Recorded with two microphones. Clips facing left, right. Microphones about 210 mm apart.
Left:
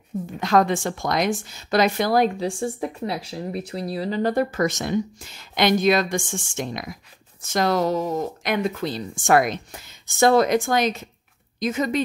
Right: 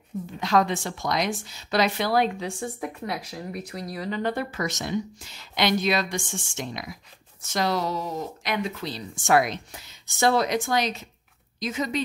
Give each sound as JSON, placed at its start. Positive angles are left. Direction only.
{"t": 0.4, "sound": "speech", "side_deg": 50}
{"t": 2.6, "sound": "speech", "side_deg": 30}